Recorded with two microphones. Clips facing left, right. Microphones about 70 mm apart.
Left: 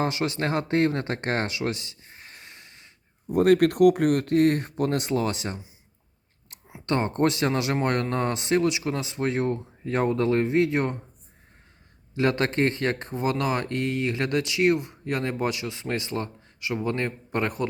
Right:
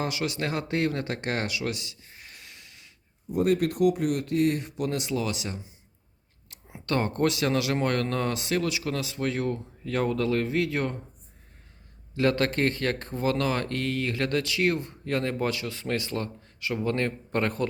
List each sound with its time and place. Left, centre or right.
0.0 s speech: left
3.2 s speech: left
6.5 s speech: left
12.1 s speech: left